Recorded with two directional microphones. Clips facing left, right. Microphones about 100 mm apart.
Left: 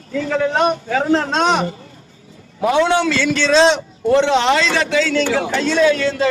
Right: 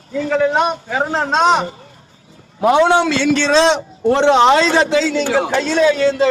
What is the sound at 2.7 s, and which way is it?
Speech, 25° right (ahead or behind).